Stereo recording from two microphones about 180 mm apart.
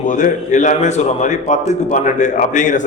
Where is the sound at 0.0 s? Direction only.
45° left (ahead or behind).